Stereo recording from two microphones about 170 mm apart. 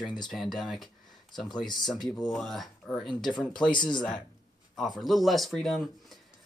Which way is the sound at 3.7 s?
25° left (ahead or behind).